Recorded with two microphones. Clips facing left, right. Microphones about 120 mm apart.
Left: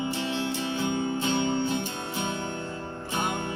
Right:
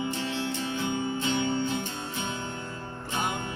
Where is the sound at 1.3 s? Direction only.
20° left (ahead or behind).